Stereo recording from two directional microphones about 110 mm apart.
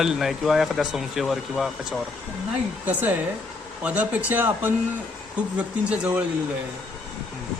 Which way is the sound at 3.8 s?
10° right (ahead or behind).